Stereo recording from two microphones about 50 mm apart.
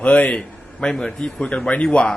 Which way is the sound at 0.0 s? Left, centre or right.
Left.